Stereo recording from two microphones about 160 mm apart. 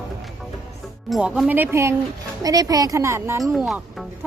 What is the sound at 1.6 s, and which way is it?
A woman's voice, 15° right (ahead or behind).